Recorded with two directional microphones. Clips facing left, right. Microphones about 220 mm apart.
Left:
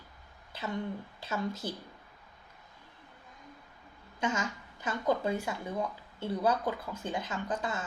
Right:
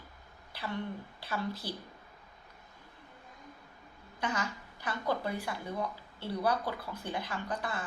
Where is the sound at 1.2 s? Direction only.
20° left (ahead or behind).